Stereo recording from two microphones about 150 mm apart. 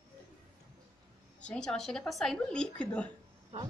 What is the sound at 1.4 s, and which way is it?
Speech, 5° left (ahead or behind).